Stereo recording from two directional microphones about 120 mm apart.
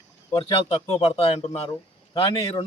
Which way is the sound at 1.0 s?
60° left (ahead or behind).